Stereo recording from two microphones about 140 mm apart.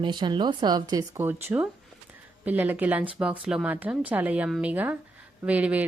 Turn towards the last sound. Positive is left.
turn(degrees=-10)  # may be behind; listen again after turning